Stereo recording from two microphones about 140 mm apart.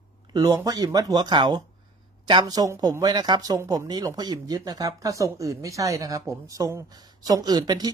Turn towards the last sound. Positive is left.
turn(degrees=-30)  # may be behind; listen again after turning